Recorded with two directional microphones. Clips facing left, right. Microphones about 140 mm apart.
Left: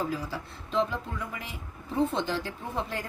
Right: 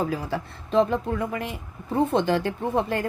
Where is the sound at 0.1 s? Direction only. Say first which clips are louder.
Right 5 dB; 60° right (ahead or behind).